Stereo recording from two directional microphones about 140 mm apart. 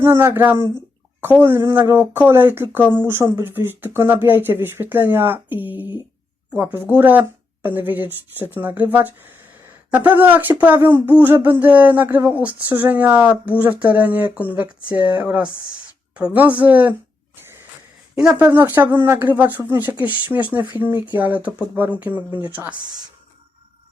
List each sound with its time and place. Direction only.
0.0 s speech: 20° right (ahead or behind)
0.5 s speech: 30° left (ahead or behind)
1.2 s speech: 15° right (ahead or behind)
18.1 s speech: 10° right (ahead or behind)